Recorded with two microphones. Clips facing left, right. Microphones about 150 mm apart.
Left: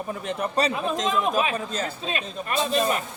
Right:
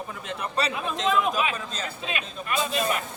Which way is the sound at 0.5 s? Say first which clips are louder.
Left 3 dB; 40° left (ahead or behind).